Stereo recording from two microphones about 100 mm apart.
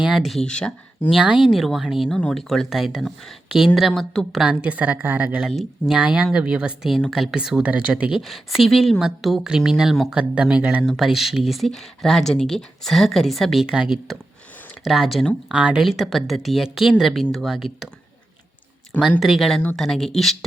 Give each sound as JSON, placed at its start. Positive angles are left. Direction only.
{"t": 0.0, "sound": "speech", "side_deg": 0}
{"t": 1.1, "sound": "speech", "side_deg": -5}
{"t": 4.4, "sound": "speech", "side_deg": -15}
{"t": 8.2, "sound": "speech", "side_deg": 0}
{"t": 10.8, "sound": "speech", "side_deg": 0}
{"t": 14.8, "sound": "speech", "side_deg": 0}
{"t": 19.2, "sound": "speech", "side_deg": 0}